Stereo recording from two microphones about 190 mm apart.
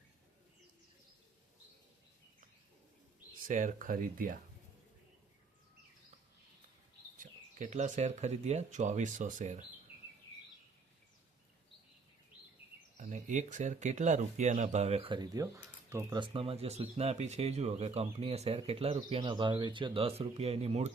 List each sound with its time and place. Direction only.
3.4 s speech: 40° right (ahead or behind)
7.2 s speech: 40° right (ahead or behind)
13.0 s speech: 40° right (ahead or behind)